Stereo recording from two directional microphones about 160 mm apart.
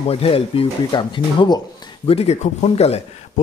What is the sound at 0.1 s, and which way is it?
A man's voice, 35° left (ahead or behind).